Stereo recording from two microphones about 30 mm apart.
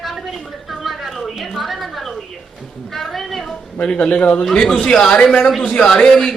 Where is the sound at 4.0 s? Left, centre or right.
Left.